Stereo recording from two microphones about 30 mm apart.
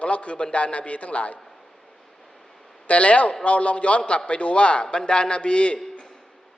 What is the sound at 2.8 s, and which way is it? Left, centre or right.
A man's voice, left.